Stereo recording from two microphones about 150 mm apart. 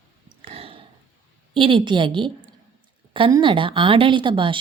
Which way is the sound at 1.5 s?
35° right (ahead or behind).